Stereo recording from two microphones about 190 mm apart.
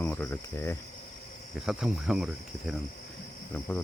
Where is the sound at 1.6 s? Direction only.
Centre (ahead or behind).